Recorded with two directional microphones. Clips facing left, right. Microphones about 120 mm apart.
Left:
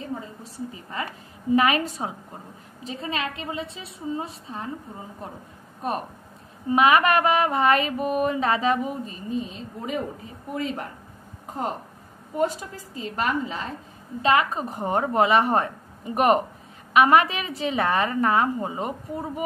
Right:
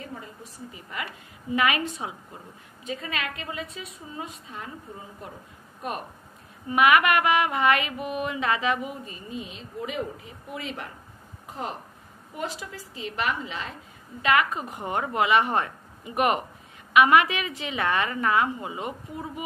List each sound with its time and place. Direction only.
0.0 s a sound: 35° left (ahead or behind)
1.5 s mantra: 35° left (ahead or behind)
2.8 s a woman's voice: 30° left (ahead or behind)
5.8 s speech: 35° left (ahead or behind)
6.7 s mantra: 30° left (ahead or behind)
12.4 s mantra: 40° left (ahead or behind)